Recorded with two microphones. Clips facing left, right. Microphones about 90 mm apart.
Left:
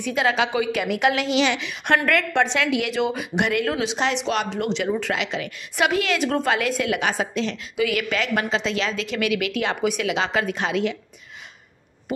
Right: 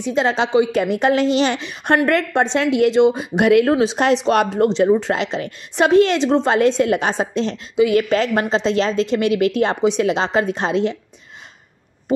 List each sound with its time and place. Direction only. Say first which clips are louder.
0.0 s a woman's voice: right 3 dB; 30° right (ahead or behind)
3.3 s a woman's voice: right 9 dB; 45° right (ahead or behind)
4.6 s a woman's voice: right 9 dB; 35° right (ahead or behind)